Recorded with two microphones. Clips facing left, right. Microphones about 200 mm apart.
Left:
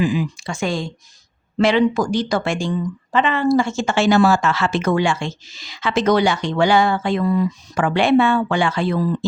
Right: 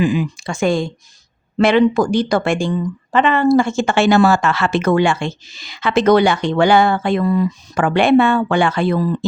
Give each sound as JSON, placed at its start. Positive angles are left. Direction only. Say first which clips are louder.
{"t": 0.0, "sound": "speech", "louder": "right 3 dB", "side_deg": -60}